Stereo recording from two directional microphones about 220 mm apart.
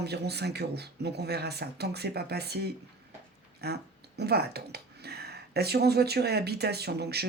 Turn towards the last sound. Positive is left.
turn(degrees=-45)  # may be behind; listen again after turning